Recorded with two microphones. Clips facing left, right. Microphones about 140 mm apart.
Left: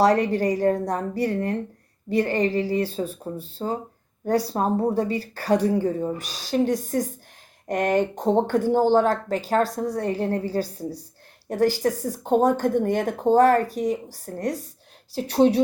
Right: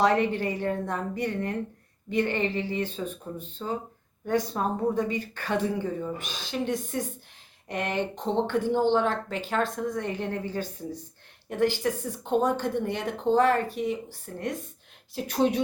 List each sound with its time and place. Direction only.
0.0 s speech: 40° left (ahead or behind)